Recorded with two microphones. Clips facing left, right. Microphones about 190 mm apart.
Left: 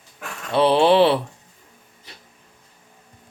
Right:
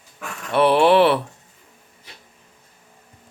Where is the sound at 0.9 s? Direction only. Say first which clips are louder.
Even; 15° left (ahead or behind).